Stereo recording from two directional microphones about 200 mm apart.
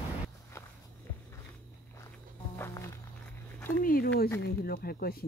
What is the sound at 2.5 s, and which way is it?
Music, 15° left (ahead or behind).